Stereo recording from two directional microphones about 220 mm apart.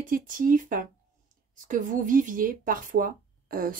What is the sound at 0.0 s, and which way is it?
Speech, 40° right (ahead or behind).